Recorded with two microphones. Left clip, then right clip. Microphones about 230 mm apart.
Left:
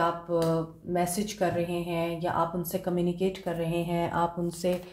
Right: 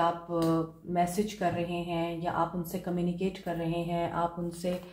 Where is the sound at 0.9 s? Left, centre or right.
Left.